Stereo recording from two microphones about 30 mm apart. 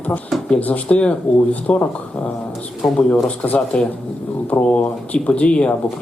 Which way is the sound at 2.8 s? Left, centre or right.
Centre.